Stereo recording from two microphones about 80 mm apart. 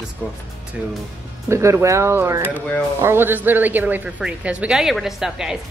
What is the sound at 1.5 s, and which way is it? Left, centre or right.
A woman's voice, right.